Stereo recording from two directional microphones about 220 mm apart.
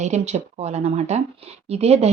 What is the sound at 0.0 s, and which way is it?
Speech, 30° right (ahead or behind).